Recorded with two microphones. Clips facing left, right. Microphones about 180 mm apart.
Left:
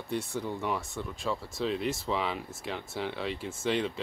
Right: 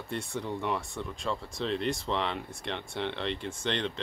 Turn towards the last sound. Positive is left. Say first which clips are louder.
# left 2 dB
turn(degrees=5)  # may be behind; listen again after turning